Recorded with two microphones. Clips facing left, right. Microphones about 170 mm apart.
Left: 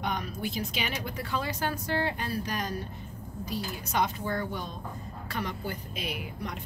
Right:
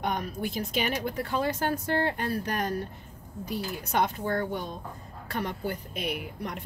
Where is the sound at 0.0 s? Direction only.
50° right (ahead or behind).